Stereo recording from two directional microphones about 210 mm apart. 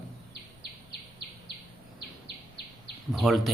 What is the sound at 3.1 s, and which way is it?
Speech, centre (ahead or behind).